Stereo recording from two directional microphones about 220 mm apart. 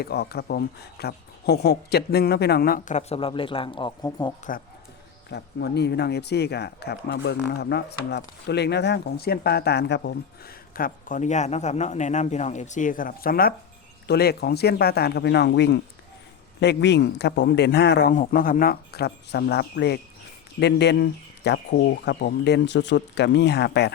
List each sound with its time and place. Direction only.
0.0 s speech: 45° left (ahead or behind); by 4.4 s 20° left (ahead or behind)
5.3 s speech: 50° left (ahead or behind)